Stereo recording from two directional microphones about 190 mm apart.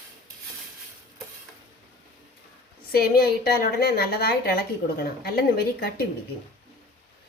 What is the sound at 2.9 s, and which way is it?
A woman's voice, 50° left (ahead or behind).